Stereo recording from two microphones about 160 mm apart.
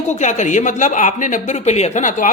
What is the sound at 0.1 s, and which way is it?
Speech, 50° left (ahead or behind).